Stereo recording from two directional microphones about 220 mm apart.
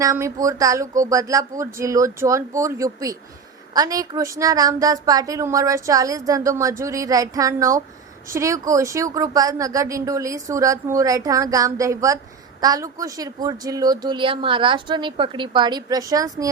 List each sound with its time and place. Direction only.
0.0 s speech: 15° right (ahead or behind)